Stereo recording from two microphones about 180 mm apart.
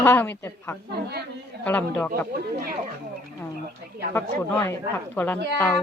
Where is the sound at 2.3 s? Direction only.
55° right (ahead or behind).